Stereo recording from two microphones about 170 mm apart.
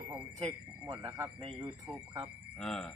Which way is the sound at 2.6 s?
5° left (ahead or behind).